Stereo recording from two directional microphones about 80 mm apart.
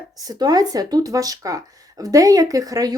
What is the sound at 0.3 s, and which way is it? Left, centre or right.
Speech, right.